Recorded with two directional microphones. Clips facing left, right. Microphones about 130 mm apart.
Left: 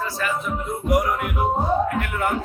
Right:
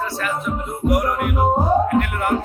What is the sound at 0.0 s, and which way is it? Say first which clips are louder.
Speech: right 2 dB; centre (ahead or behind).